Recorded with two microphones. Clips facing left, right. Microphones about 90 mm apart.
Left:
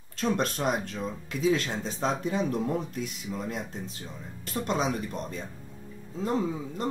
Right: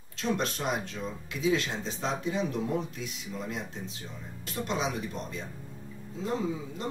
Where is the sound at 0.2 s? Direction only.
45° left (ahead or behind).